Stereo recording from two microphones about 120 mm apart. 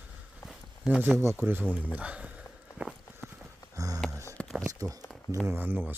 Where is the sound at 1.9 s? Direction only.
10° right (ahead or behind).